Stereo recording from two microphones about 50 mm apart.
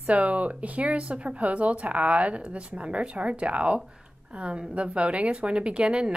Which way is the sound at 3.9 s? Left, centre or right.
Centre.